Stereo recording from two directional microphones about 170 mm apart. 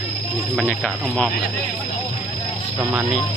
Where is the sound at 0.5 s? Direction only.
5° left (ahead or behind).